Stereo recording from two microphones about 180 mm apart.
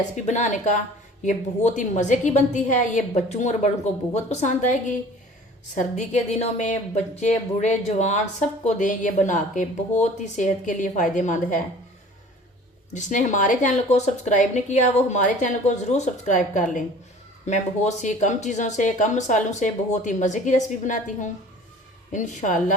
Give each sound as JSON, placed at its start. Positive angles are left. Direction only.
{"t": 0.3, "sound": "a woman's voice", "side_deg": 40}
{"t": 12.9, "sound": "speech", "side_deg": 45}